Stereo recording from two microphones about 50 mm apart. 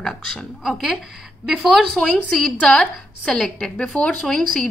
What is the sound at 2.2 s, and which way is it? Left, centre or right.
A woman's voice, centre.